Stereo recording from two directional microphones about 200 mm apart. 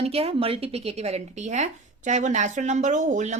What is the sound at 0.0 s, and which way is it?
A woman's voice, 30° right (ahead or behind).